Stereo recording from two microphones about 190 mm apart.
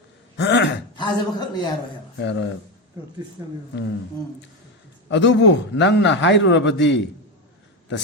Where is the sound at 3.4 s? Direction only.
15° right (ahead or behind).